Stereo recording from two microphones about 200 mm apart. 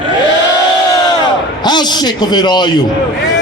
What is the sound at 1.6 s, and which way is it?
Speech, 20° left (ahead or behind).